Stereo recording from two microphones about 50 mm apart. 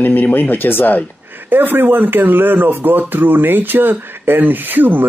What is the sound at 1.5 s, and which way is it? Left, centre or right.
Speech, right.